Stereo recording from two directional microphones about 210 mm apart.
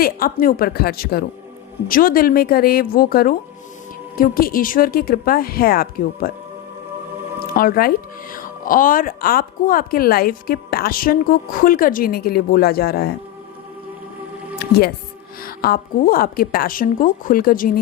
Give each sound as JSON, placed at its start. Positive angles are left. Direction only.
{"t": 0.0, "sound": "speech", "side_deg": 45}
{"t": 7.5, "sound": "speech", "side_deg": 45}
{"t": 15.4, "sound": "speech", "side_deg": 45}